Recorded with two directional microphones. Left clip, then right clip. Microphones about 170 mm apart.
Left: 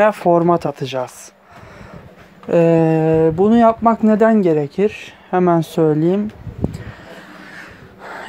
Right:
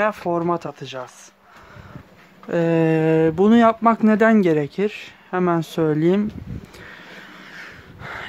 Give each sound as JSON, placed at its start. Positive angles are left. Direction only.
{"t": 0.0, "sound": "speech", "side_deg": 10}
{"t": 2.4, "sound": "speech", "side_deg": 0}
{"t": 2.8, "sound": "speech", "side_deg": -15}
{"t": 4.7, "sound": "speech", "side_deg": -5}
{"t": 5.9, "sound": "speech", "side_deg": -15}
{"t": 7.5, "sound": "a sound", "side_deg": -10}